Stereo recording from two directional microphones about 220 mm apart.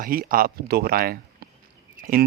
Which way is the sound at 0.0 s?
40° right (ahead or behind).